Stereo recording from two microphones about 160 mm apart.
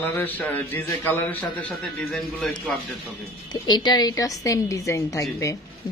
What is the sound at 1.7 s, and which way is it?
Speech, centre (ahead or behind).